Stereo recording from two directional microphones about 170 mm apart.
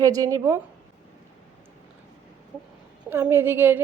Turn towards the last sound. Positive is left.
turn(degrees=-10)  # may be behind; listen again after turning